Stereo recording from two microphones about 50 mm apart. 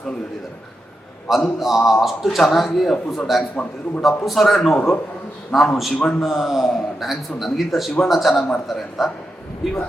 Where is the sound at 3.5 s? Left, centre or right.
Left.